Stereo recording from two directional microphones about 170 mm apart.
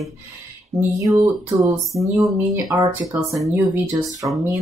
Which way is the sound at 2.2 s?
20° right (ahead or behind).